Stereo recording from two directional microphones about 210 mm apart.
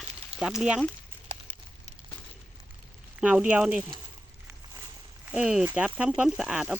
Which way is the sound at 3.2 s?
5° right (ahead or behind).